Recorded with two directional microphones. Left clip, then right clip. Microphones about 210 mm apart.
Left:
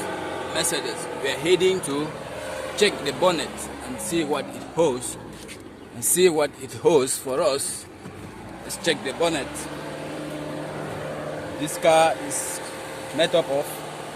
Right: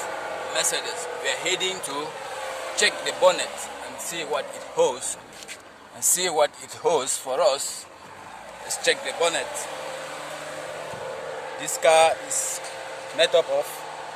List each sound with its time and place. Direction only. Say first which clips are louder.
0.5 s a man's voice: even; 5° right (ahead or behind)
6.1 s a man's voice: left 3 dB; 10° right (ahead or behind)
8.8 s a man's voice: even; 15° right (ahead or behind)
11.6 s a man's voice: even; 10° right (ahead or behind)
13.1 s a man's voice: right 1 dB; 10° right (ahead or behind)